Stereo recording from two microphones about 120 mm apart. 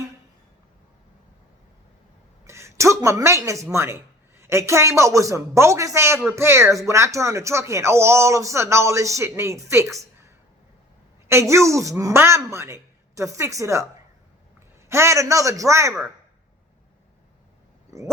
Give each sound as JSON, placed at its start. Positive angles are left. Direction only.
{"t": 2.5, "sound": "speech", "side_deg": -25}
{"t": 11.3, "sound": "speech", "side_deg": -25}
{"t": 14.8, "sound": "speech", "side_deg": -25}